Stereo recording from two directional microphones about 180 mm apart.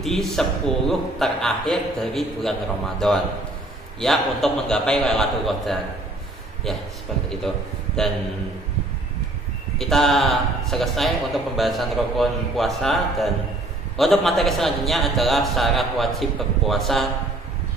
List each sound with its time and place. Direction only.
0.0 s a man's voice: centre (ahead or behind)
7.2 s a man's voice: 5° left (ahead or behind)
9.8 s a man's voice: centre (ahead or behind)